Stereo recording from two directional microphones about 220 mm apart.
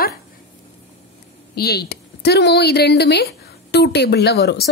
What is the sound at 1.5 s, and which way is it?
Speech, 45° left (ahead or behind).